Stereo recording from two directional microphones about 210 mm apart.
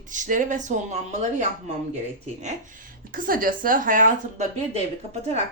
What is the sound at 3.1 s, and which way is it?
A woman's voice, 40° right (ahead or behind).